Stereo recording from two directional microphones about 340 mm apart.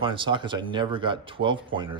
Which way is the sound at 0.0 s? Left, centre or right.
Centre.